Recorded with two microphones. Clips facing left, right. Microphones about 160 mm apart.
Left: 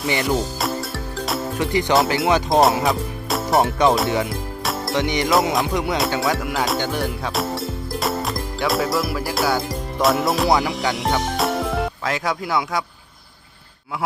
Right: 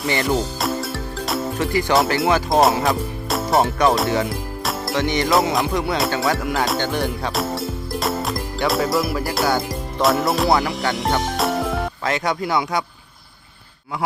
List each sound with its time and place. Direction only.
0.2 s music: centre (ahead or behind)
1.5 s music: 20° left (ahead or behind)
2.5 s speech: centre (ahead or behind)
2.8 s music: centre (ahead or behind)
3.8 s speech: centre (ahead or behind)
4.3 s music: centre (ahead or behind)
4.9 s music: 15° left (ahead or behind)
5.2 s speech: centre (ahead or behind)
5.7 s music: 15° left (ahead or behind)
6.1 s music: centre (ahead or behind)
10.6 s speech: centre (ahead or behind)